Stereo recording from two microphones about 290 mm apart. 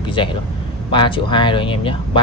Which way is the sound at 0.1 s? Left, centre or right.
Centre.